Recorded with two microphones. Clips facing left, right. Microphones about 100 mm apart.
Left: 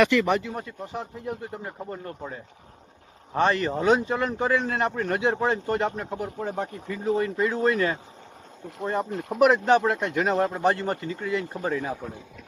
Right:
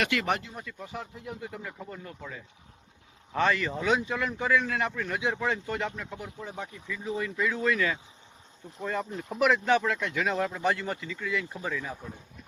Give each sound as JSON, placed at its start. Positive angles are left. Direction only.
{"t": 0.5, "sound": "speech", "side_deg": 30}
{"t": 1.2, "sound": "speech", "side_deg": 45}
{"t": 9.0, "sound": "speech", "side_deg": 60}
{"t": 9.7, "sound": "speech", "side_deg": 45}